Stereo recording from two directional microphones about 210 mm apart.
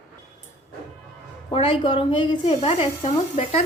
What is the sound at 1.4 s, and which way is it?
A woman's voice, 25° left (ahead or behind).